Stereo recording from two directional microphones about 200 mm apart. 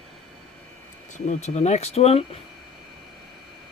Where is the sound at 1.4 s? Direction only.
35° left (ahead or behind).